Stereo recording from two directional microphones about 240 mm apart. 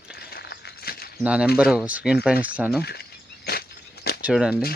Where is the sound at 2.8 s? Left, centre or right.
Left.